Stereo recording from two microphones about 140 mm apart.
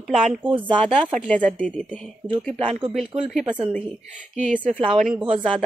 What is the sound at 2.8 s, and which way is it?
A woman's voice, centre (ahead or behind).